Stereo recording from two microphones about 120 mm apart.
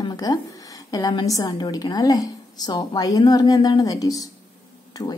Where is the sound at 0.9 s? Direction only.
30° left (ahead or behind).